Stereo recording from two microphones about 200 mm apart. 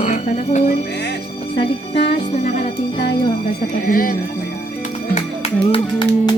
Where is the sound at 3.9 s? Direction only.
45° left (ahead or behind).